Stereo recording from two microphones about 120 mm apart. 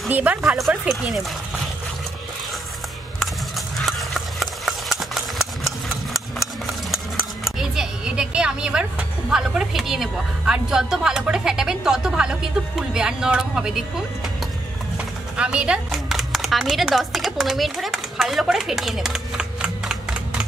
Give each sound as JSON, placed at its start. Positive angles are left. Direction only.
{"t": 0.1, "sound": "speech", "side_deg": -15}
{"t": 0.4, "sound": "a woman's voice", "side_deg": 0}
{"t": 3.7, "sound": "horse", "side_deg": 0}
{"t": 6.1, "sound": "a sound", "side_deg": 0}
{"t": 9.3, "sound": "a woman's voice", "side_deg": -5}
{"t": 15.3, "sound": "a sound", "side_deg": -10}